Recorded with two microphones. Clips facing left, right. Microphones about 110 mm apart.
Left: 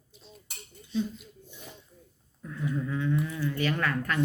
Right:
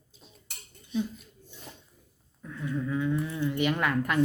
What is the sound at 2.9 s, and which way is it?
Speech, 10° right (ahead or behind).